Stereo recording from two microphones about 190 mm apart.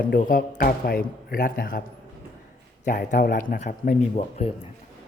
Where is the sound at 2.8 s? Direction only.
45° left (ahead or behind).